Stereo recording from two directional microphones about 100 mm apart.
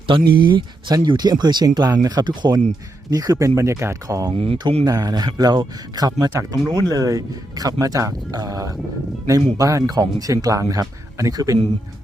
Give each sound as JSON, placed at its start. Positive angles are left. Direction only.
{"t": 0.1, "sound": "speech", "side_deg": -55}
{"t": 3.1, "sound": "speech", "side_deg": -35}